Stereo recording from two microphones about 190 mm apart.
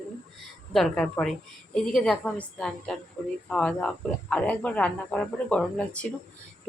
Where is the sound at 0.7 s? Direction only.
Centre (ahead or behind).